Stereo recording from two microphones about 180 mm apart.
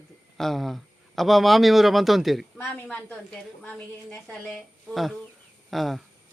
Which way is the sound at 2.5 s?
10° left (ahead or behind).